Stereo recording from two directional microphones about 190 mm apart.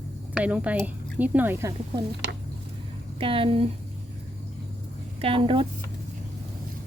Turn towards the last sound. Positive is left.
turn(degrees=-25)  # may be behind; listen again after turning